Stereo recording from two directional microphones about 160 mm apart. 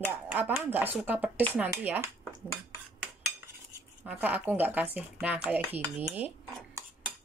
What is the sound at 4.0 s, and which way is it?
Speech, 10° right (ahead or behind).